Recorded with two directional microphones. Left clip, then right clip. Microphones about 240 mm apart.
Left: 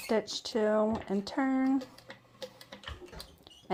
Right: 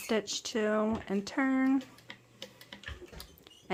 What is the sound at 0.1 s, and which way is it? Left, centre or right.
Speech, right.